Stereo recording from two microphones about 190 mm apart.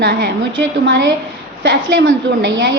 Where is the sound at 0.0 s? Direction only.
65° right (ahead or behind).